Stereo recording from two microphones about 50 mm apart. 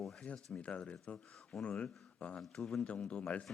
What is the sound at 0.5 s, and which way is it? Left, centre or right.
Speech, left.